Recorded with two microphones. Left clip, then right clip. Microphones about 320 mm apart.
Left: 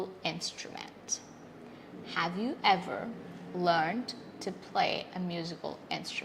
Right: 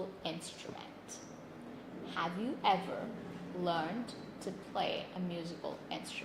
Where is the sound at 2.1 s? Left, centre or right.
Left.